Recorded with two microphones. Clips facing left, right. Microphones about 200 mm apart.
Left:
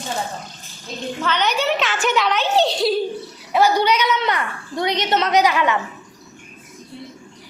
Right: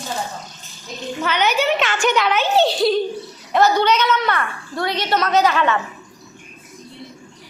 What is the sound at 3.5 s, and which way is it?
A woman's voice, 10° left (ahead or behind).